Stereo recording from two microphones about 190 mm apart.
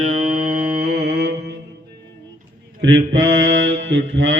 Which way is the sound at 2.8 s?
70° right (ahead or behind).